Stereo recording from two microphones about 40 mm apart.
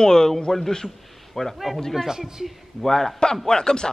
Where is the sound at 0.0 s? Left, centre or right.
Centre.